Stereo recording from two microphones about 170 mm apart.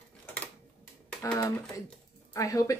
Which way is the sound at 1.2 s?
20° left (ahead or behind).